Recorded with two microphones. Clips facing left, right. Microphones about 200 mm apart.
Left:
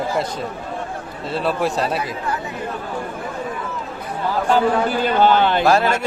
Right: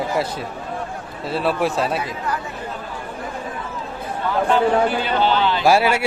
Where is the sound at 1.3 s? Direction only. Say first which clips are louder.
Even; centre (ahead or behind).